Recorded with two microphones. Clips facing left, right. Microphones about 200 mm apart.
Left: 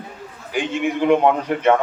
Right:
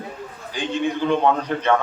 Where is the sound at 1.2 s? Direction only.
20° left (ahead or behind).